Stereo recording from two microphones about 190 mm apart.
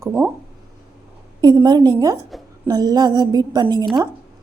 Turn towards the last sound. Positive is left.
turn(degrees=-20)  # may be behind; listen again after turning